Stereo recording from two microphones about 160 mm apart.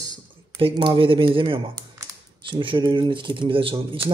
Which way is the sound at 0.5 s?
30° right (ahead or behind).